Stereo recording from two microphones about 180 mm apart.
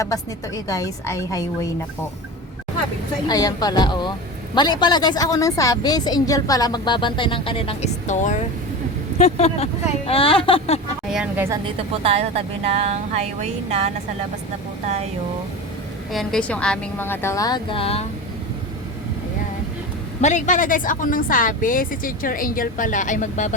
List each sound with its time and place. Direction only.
0.0 s a woman's voice: 20° left (ahead or behind)
3.2 s a woman's voice: 20° left (ahead or behind)
11.1 s a woman's voice: 5° right (ahead or behind)
11.4 s a woman's voice: 20° right (ahead or behind)
11.8 s speech: 30° right (ahead or behind)
16.1 s a woman's voice: 5° left (ahead or behind); by 18.0 s 30° left (ahead or behind)
20.2 s a woman's voice: 45° left (ahead or behind)